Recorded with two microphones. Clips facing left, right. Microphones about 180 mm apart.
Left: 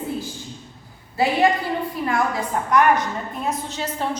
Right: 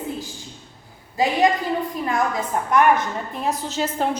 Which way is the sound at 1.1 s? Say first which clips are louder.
Even; 15° right (ahead or behind).